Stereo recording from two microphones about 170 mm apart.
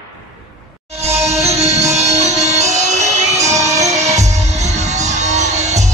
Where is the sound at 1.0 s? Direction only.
40° right (ahead or behind).